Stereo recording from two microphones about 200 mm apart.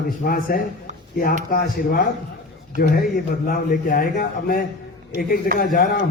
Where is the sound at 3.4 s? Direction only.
45° left (ahead or behind).